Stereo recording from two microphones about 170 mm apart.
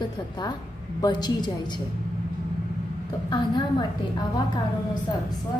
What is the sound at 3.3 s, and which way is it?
A woman's voice, 25° left (ahead or behind).